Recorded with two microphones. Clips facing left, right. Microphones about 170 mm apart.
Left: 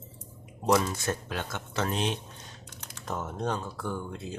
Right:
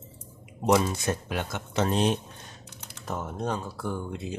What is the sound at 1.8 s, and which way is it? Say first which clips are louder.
Speech: right 6 dB; 35° right (ahead or behind).